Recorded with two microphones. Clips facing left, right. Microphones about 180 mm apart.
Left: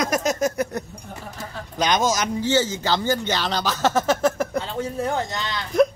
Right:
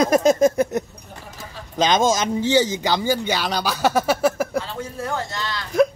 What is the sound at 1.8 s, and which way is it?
Speech, 25° right (ahead or behind).